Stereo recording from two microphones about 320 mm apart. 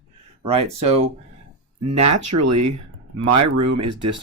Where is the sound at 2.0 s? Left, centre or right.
Right.